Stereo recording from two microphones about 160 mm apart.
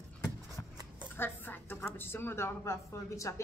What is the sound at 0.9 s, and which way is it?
A woman's voice, 15° left (ahead or behind).